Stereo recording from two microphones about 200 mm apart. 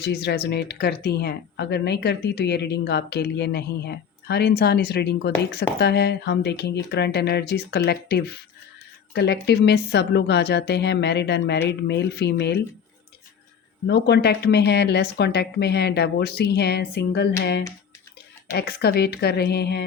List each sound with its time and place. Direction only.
0.1 s a woman's voice: 55° left (ahead or behind)
13.8 s a woman's voice: 60° left (ahead or behind)